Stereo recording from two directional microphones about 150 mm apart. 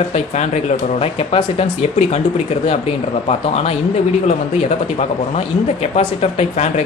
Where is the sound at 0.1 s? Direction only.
50° left (ahead or behind).